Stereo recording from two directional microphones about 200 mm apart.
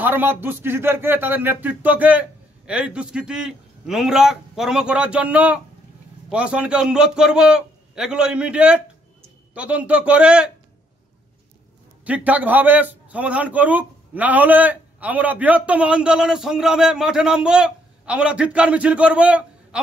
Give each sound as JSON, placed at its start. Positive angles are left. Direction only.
{"t": 0.0, "sound": "a man's voice", "side_deg": -10}
{"t": 12.0, "sound": "a man's voice", "side_deg": -5}